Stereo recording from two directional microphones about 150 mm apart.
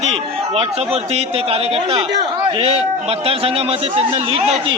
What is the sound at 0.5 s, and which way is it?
Speech, 45° right (ahead or behind).